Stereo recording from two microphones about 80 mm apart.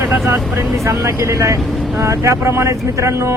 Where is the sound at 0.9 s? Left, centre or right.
Right.